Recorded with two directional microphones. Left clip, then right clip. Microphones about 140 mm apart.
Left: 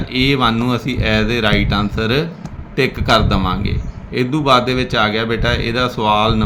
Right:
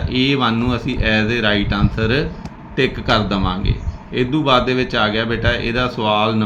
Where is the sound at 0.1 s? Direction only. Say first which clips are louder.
Left 2 dB; 45° left (ahead or behind).